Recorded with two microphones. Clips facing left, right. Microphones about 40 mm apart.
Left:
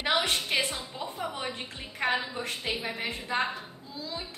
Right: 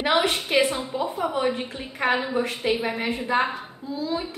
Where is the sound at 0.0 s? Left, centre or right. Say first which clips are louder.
Right 6 dB; centre.